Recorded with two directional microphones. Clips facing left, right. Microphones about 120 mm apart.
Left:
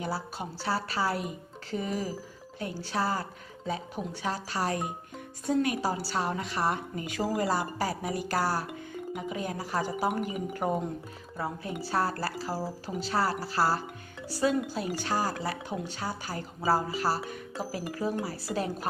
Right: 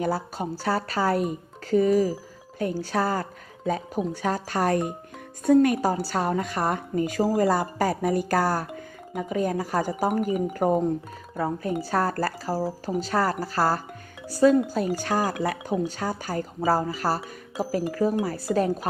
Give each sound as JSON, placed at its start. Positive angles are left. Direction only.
{"t": 0.0, "sound": "speech", "side_deg": -45}
{"t": 7.4, "sound": "speech", "side_deg": -45}